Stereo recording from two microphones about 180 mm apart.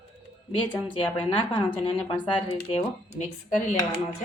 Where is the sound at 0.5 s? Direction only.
25° left (ahead or behind).